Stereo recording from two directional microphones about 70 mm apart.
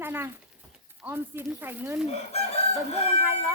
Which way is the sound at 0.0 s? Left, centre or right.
Right.